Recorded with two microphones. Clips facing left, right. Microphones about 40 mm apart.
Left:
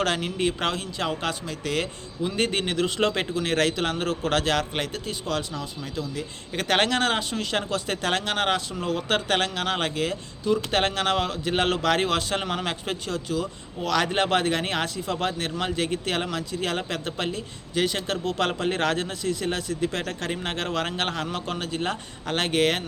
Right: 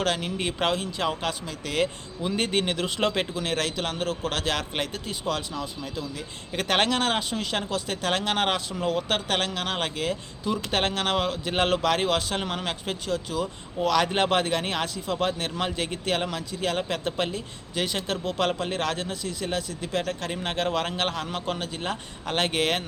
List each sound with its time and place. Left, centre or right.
0.0 s speech: centre
0.3 s speech: centre
1.0 s speech: centre